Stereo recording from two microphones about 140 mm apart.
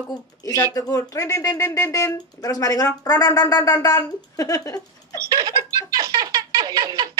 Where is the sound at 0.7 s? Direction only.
25° left (ahead or behind).